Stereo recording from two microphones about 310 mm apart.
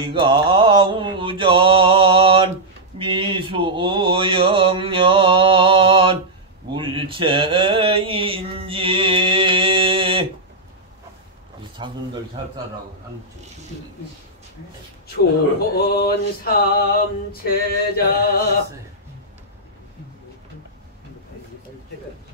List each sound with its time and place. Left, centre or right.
0.0 s mantra: centre
11.8 s a sound: centre
15.7 s male singing: left